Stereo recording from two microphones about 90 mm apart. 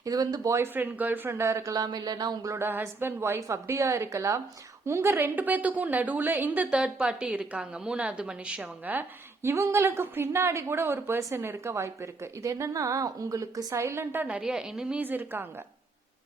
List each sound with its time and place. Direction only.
0.0 s speech: 45° right (ahead or behind)
0.6 s a woman's voice: 20° right (ahead or behind); by 2.6 s 45° right (ahead or behind)
2.6 s a woman's voice: 25° right (ahead or behind)
14.3 s a woman's voice: 10° right (ahead or behind)
15.0 s speech: 20° right (ahead or behind)